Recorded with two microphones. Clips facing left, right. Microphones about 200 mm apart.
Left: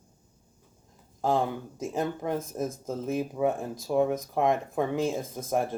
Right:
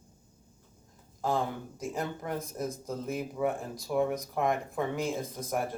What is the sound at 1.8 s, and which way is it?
Speech, 20° left (ahead or behind).